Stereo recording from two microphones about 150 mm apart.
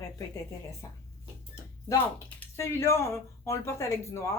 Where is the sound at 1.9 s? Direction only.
15° left (ahead or behind).